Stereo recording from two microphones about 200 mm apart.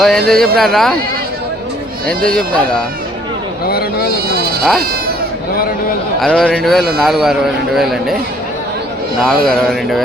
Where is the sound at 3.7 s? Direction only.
50° left (ahead or behind).